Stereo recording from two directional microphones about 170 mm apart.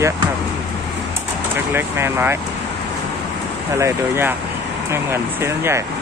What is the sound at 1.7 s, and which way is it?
Speech, 15° right (ahead or behind).